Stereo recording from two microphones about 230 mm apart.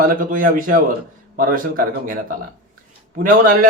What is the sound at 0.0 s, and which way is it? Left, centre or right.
Speech, right.